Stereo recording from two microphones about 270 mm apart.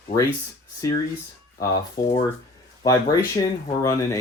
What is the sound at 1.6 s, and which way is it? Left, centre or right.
Speech, centre.